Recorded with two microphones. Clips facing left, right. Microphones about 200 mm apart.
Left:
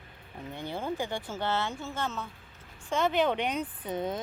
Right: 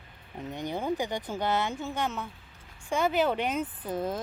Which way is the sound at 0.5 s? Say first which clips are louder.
Right 3 dB; 15° right (ahead or behind).